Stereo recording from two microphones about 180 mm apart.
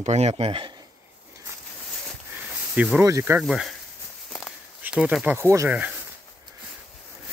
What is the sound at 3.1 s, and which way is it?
Speech, 15° right (ahead or behind).